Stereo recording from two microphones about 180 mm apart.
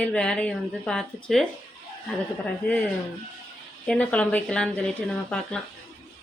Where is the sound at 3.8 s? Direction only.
5° left (ahead or behind).